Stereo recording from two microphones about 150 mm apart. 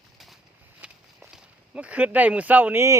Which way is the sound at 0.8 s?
5° right (ahead or behind).